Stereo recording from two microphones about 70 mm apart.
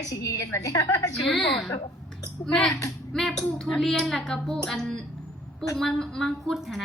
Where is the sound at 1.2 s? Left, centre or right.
Centre.